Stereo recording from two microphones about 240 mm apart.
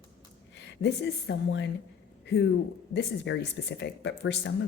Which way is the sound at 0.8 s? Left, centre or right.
Left.